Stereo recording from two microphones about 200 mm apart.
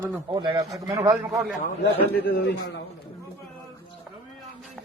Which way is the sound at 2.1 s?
50° left (ahead or behind).